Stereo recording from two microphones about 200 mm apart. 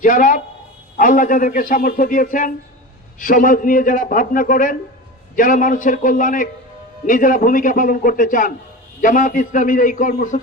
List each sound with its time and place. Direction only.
0.0 s a man's voice: 40° left (ahead or behind)